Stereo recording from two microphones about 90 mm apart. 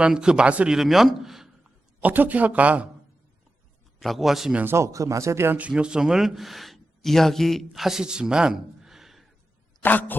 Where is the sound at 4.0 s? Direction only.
Centre (ahead or behind).